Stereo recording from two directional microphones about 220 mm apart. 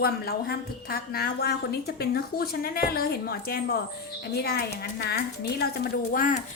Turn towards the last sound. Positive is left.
turn(degrees=40)  # may be behind; listen again after turning